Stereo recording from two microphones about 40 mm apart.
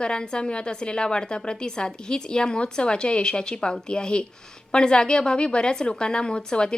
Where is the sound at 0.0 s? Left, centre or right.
Centre.